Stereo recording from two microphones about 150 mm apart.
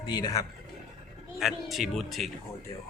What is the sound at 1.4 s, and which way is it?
Speech, centre (ahead or behind).